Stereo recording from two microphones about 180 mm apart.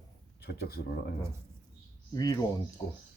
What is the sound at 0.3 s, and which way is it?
Speech, 60° left (ahead or behind).